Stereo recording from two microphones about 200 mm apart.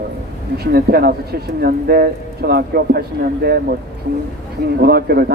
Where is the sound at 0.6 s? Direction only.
50° right (ahead or behind).